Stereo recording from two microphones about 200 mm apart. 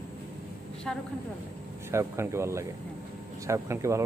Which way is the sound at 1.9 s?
15° right (ahead or behind).